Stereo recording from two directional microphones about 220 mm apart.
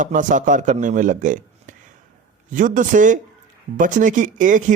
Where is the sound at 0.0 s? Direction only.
35° right (ahead or behind).